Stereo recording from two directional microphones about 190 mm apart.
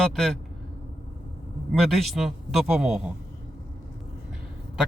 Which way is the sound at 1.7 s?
Centre (ahead or behind).